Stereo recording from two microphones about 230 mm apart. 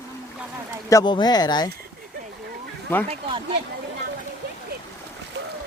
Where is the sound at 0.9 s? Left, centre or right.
Centre.